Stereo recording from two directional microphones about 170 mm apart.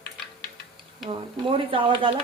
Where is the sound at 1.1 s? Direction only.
30° right (ahead or behind).